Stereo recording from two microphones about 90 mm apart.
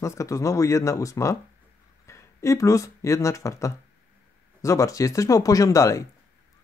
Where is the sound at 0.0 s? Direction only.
35° left (ahead or behind).